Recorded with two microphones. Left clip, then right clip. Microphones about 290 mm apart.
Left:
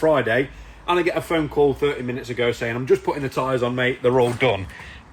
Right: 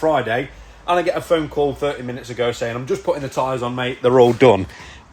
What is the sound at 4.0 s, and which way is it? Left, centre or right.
Speech, right.